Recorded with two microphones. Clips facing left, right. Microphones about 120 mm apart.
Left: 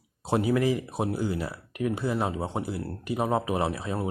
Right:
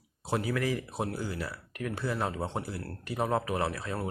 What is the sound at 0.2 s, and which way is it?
Speech, 20° left (ahead or behind).